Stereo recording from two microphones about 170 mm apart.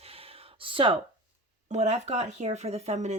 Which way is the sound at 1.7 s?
40° right (ahead or behind).